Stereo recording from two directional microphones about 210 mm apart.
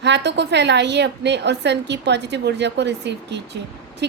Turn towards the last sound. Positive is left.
turn(degrees=-55)  # may be behind; listen again after turning